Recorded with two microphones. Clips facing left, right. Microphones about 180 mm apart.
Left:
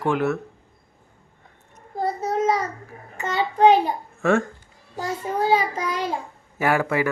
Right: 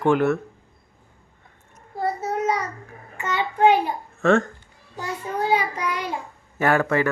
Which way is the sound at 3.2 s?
25° left (ahead or behind).